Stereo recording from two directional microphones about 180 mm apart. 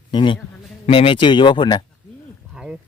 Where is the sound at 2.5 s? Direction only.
5° right (ahead or behind).